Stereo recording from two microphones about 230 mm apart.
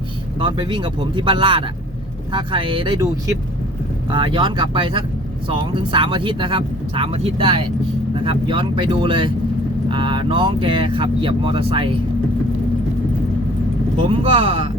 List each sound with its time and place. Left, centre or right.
0.3 s speech: centre
14.1 s speech: right